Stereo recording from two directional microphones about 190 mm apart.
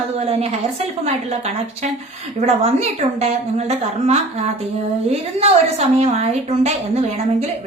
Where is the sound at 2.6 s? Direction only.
35° right (ahead or behind).